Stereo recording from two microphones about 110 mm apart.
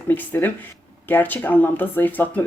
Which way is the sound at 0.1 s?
15° left (ahead or behind).